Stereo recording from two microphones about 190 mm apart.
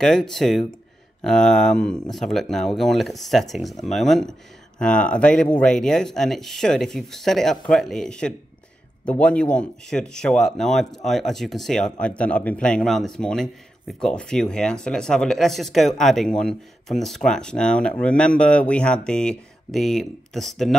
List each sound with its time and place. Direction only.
0.0 s a man's voice: centre (ahead or behind)